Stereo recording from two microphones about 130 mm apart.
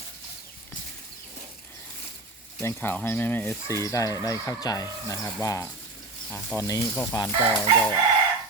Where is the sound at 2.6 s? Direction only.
15° left (ahead or behind).